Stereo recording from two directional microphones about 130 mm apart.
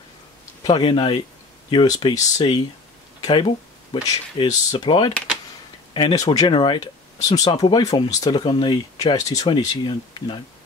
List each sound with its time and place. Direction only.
0.7 s speech: 40° left (ahead or behind)
4.0 s speech: 30° left (ahead or behind)